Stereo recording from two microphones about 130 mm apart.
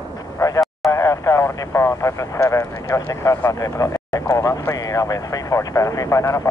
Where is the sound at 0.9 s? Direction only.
25° left (ahead or behind).